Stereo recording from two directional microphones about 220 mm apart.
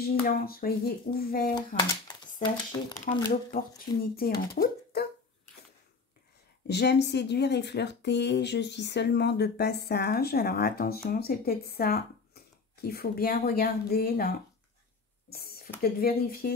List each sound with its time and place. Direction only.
0.0 s a woman's voice: 40° left (ahead or behind)
2.4 s speech: 20° left (ahead or behind)
4.6 s speech: 40° left (ahead or behind)
6.7 s a woman's voice: 50° left (ahead or behind)
15.2 s a sound: 45° left (ahead or behind)
15.8 s a woman's voice: 45° left (ahead or behind)